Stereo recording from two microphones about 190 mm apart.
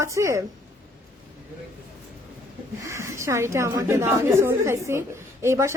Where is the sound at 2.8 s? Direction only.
15° right (ahead or behind).